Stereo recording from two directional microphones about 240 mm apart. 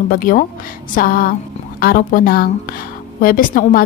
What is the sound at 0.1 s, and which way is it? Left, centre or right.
A woman's voice, left.